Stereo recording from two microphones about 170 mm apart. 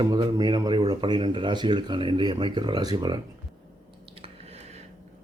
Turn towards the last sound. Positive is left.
turn(degrees=-40)  # may be behind; listen again after turning